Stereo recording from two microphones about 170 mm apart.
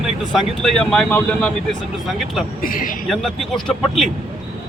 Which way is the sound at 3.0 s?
Centre (ahead or behind).